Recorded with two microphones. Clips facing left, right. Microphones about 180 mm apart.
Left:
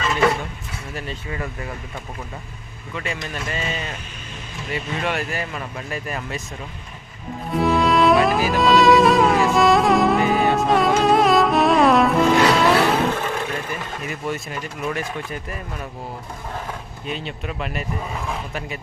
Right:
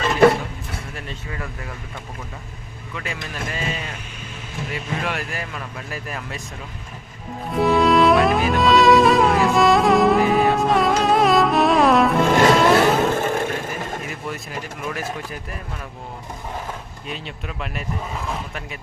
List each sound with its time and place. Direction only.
0.0 s a sound: 45° right (ahead or behind)
0.9 s speech: 5° left (ahead or behind)
2.9 s speech: centre (ahead or behind)
7.5 s music: centre (ahead or behind)
12.3 s music: 50° right (ahead or behind)
12.7 s vehicle: 45° right (ahead or behind)
14.1 s speech: centre (ahead or behind)
17.1 s speech: centre (ahead or behind)